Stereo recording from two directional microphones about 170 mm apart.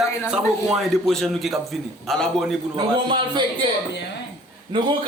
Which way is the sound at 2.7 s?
30° right (ahead or behind).